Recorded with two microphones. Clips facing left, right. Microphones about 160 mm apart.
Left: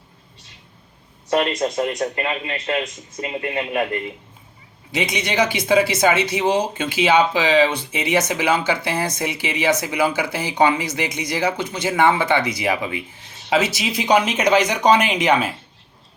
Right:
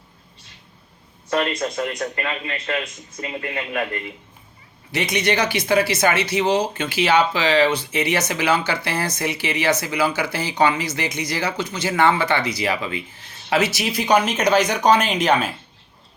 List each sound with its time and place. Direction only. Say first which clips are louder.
1.3 s speech: left 3 dB; 20° left (ahead or behind)